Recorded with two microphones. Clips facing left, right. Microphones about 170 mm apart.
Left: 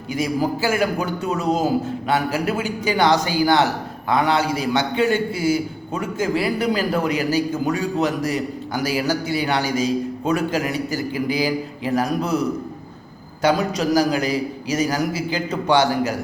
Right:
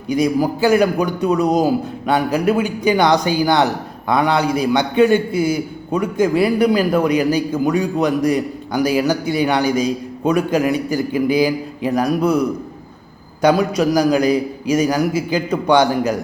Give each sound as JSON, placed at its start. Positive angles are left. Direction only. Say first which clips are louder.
{"t": 0.1, "sound": "a man's voice", "louder": "right 5 dB", "side_deg": -15}